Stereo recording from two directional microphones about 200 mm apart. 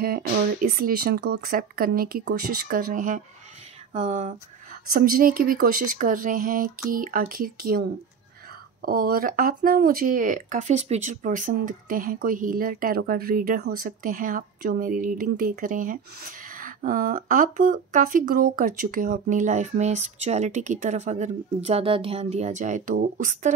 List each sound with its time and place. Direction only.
0.0 s speech: 50° right (ahead or behind)
4.9 s speech: 45° right (ahead or behind)
8.8 s speech: 45° right (ahead or behind)